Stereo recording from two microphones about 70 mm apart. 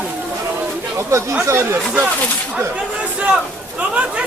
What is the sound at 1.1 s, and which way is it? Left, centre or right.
Speech, right.